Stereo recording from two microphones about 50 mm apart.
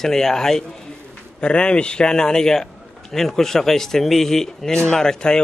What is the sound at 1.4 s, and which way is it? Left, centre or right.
A man's voice, left.